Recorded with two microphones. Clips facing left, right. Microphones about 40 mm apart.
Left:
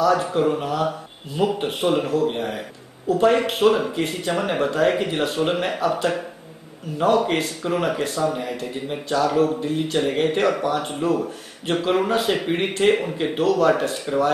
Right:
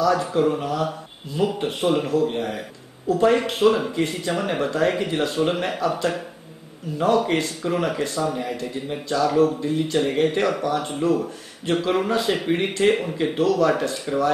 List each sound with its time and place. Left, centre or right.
0.1 s speech: centre
5.3 s speech: centre
9.6 s speech: centre
9.9 s speech: centre